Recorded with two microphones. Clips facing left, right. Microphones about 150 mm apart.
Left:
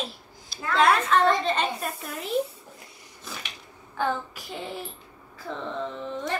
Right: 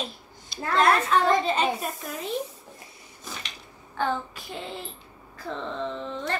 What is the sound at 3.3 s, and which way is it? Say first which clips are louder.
Dishes: even; 10° left (ahead or behind).